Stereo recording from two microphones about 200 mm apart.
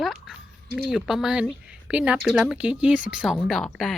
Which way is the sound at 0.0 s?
Centre (ahead or behind).